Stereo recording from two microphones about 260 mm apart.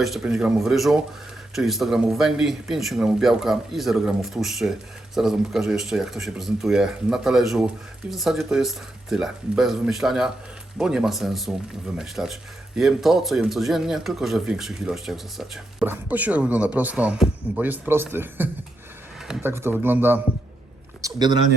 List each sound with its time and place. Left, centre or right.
0.0 s speech: centre